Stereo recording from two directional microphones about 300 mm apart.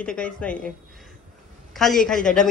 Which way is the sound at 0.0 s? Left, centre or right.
Centre.